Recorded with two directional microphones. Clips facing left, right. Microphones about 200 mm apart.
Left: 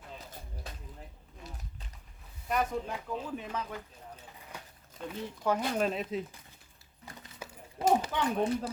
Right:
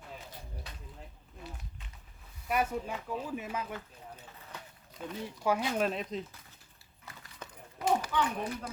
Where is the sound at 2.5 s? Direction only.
5° right (ahead or behind).